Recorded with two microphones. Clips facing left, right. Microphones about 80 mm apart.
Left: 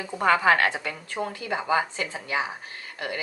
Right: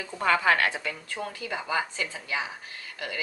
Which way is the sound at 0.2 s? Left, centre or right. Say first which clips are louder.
Left 3 dB; left.